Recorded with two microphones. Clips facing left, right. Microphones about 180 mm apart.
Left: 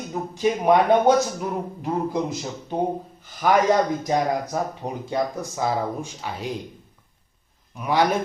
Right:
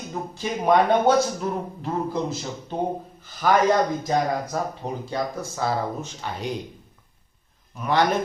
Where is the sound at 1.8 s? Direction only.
15° left (ahead or behind).